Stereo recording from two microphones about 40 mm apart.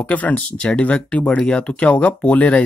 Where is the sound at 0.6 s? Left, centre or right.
Left.